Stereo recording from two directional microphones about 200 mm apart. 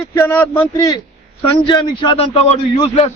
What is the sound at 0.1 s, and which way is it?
A man's voice, 10° left (ahead or behind).